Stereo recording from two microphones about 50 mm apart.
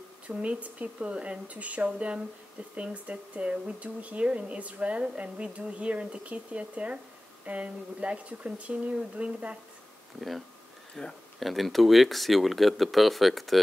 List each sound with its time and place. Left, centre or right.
0.3 s speech: right
11.0 s speech: centre
11.3 s speech: centre